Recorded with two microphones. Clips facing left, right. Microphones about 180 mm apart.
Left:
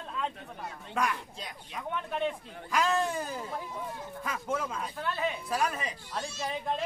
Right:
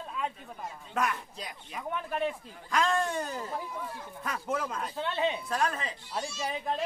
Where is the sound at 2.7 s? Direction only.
5° left (ahead or behind).